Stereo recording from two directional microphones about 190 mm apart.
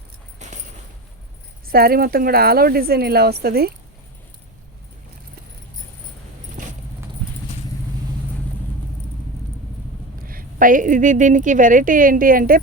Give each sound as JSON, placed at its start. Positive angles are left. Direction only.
{"t": 0.3, "sound": "keys jangling", "side_deg": -40}
{"t": 1.6, "sound": "a woman's voice", "side_deg": -50}
{"t": 10.2, "sound": "a woman's voice", "side_deg": -45}